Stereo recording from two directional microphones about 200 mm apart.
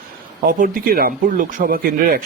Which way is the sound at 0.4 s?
45° right (ahead or behind).